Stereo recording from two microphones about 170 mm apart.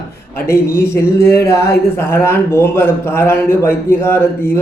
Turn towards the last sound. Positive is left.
turn(degrees=15)  # may be behind; listen again after turning